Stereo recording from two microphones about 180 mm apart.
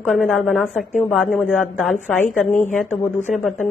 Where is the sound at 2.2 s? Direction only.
40° left (ahead or behind).